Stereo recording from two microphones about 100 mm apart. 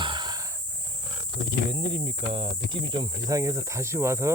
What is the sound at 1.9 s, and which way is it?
Speech, 60° right (ahead or behind).